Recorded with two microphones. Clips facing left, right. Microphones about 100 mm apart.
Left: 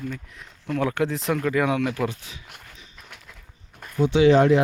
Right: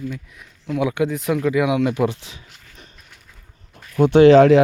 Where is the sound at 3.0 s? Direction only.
90° left.